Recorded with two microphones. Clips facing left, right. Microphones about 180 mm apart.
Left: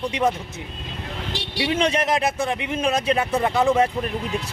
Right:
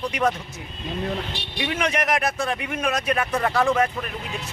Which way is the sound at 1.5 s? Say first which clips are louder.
Left 3 dB; 30° left (ahead or behind).